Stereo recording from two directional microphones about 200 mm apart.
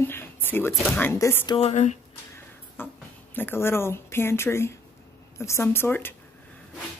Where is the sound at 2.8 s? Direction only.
10° left (ahead or behind).